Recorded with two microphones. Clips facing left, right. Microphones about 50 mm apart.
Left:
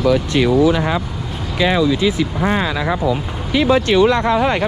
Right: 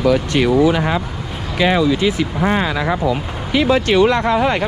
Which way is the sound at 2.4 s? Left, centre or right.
Right.